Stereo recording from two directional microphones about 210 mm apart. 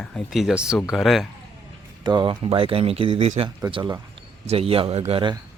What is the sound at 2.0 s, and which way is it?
Speech, 20° right (ahead or behind).